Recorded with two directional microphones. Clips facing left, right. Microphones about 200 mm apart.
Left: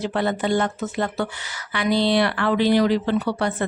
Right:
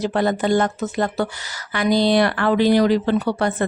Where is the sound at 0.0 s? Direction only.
40° right (ahead or behind).